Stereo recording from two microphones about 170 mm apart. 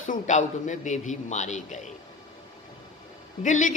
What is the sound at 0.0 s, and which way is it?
A man's voice, 50° left (ahead or behind).